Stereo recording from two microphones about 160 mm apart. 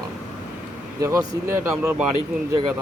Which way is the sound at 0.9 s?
20° right (ahead or behind).